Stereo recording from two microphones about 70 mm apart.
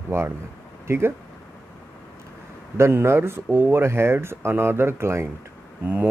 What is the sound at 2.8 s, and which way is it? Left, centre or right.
Speech, right.